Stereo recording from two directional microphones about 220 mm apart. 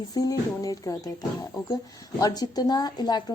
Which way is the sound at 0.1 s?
15° left (ahead or behind).